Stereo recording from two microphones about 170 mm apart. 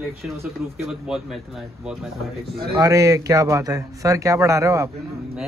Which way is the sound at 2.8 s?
20° right (ahead or behind).